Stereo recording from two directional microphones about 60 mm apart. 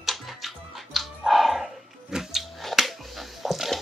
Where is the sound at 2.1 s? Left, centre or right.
Centre.